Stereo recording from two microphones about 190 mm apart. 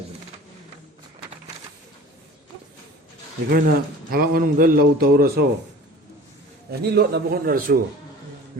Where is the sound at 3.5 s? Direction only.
50° right (ahead or behind).